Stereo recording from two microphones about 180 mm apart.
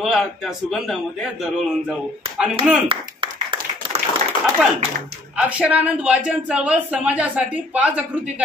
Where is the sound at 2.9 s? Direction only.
30° right (ahead or behind).